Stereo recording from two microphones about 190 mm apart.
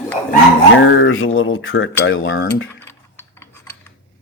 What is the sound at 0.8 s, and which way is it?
Speech, 80° left.